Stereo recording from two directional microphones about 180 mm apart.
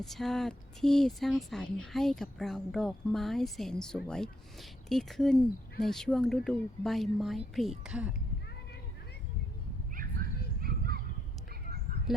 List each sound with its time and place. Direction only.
0.0 s speech: centre (ahead or behind)
9.9 s dog: 50° right (ahead or behind)